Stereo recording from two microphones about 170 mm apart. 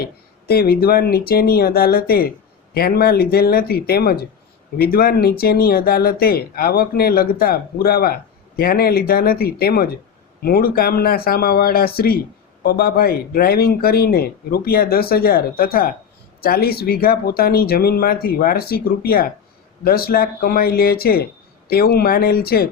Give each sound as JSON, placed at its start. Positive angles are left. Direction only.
{"t": 0.0, "sound": "speech", "side_deg": 65}